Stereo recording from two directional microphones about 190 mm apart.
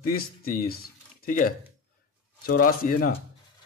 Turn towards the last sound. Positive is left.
turn(degrees=50)  # may be behind; listen again after turning